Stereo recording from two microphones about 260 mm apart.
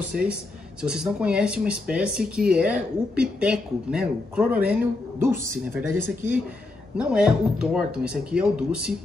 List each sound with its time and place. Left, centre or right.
0.1 s speech: right
0.8 s speech: centre
7.0 s speech: centre